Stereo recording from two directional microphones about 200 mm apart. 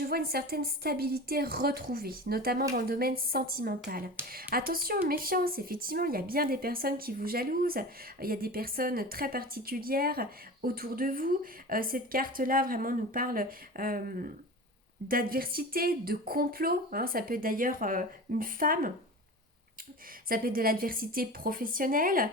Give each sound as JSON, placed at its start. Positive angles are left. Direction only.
{"t": 0.0, "sound": "speech", "side_deg": -50}
{"t": 20.2, "sound": "speech", "side_deg": -45}